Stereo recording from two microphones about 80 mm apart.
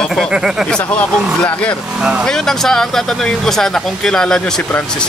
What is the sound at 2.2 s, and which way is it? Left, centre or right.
Speech, centre.